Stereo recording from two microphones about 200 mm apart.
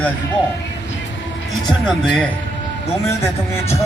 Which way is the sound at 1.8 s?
Centre (ahead or behind).